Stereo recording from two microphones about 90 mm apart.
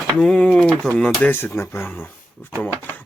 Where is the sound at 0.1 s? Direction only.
5° left (ahead or behind).